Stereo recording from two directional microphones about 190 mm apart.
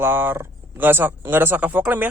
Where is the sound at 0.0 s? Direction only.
10° right (ahead or behind).